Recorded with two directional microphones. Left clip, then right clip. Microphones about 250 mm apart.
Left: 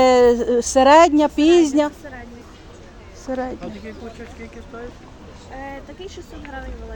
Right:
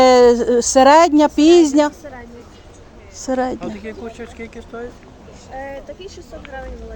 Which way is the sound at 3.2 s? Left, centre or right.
Right.